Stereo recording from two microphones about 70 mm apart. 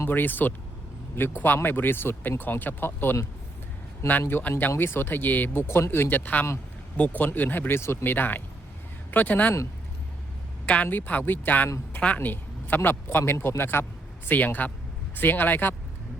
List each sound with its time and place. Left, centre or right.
0.0 s speech: left
4.2 s speech: left
10.8 s speech: left